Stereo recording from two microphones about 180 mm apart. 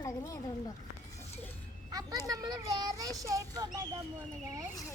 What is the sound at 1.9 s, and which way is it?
A child's voice, 20° right (ahead or behind).